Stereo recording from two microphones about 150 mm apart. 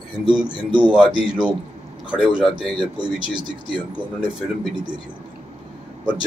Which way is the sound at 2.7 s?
30° right (ahead or behind).